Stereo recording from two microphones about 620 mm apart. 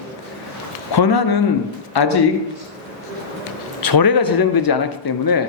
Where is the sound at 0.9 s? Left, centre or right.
Left.